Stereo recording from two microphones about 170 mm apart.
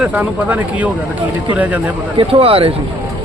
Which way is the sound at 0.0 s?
5° right (ahead or behind).